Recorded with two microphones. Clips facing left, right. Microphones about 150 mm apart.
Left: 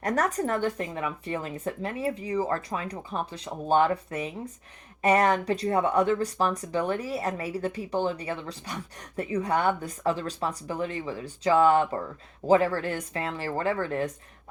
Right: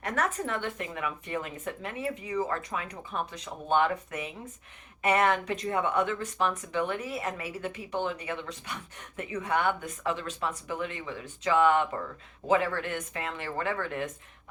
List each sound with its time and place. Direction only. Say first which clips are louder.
0.0 s speech: left 4 dB; 40° left (ahead or behind)